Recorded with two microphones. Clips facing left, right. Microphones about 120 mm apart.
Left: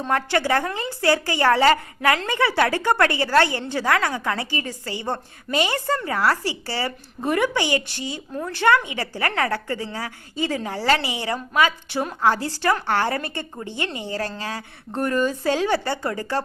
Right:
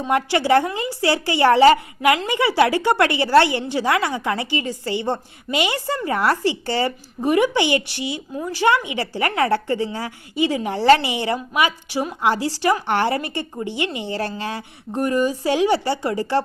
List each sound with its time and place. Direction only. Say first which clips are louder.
0.1 s a woman's voice: right 4 dB; 20° right (ahead or behind)